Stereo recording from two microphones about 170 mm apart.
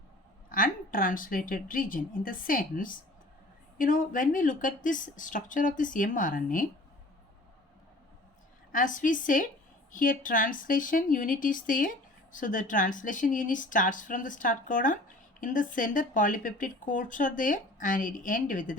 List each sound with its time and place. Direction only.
0.5 s a woman's voice: 55° left (ahead or behind)
8.7 s speech: 50° left (ahead or behind)